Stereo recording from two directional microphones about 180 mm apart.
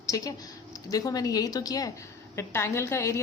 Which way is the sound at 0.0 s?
20° left (ahead or behind).